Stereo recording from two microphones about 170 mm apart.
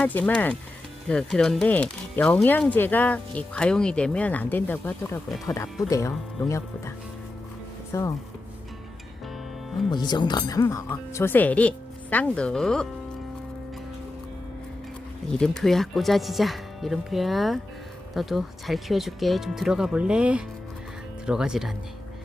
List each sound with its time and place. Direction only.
0.0 s speech: 10° left (ahead or behind)
7.9 s speech: 20° left (ahead or behind)
9.9 s speech: 25° left (ahead or behind); by 12.9 s 5° left (ahead or behind)
15.3 s speech: 5° left (ahead or behind)